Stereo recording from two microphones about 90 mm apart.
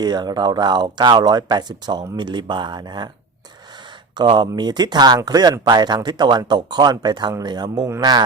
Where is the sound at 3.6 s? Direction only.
55° right (ahead or behind).